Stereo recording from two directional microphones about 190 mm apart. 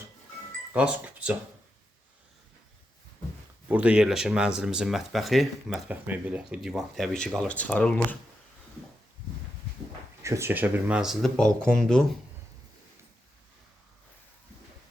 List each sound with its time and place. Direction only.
0.7 s speech: 5° right (ahead or behind)
3.7 s speech: 5° right (ahead or behind)
10.2 s speech: 15° right (ahead or behind); by 12.0 s 5° left (ahead or behind)